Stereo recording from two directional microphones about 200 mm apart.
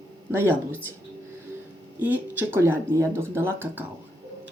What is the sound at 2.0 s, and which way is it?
Speech, 10° right (ahead or behind).